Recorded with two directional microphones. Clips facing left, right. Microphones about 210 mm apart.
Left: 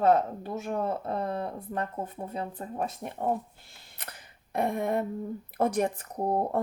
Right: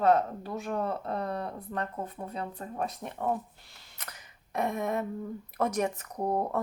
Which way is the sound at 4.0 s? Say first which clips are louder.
Left 2 dB; 30° left (ahead or behind).